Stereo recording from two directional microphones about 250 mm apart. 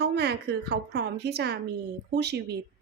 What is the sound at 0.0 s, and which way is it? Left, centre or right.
A woman's voice, right.